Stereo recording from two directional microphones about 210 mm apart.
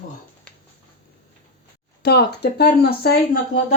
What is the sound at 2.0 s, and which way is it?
Speech, 50° left (ahead or behind).